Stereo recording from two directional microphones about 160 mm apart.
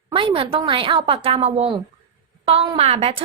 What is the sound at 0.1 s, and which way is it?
A woman's voice, 30° right (ahead or behind).